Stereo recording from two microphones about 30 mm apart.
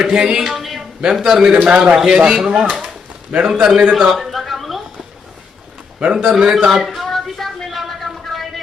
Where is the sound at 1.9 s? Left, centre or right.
Right.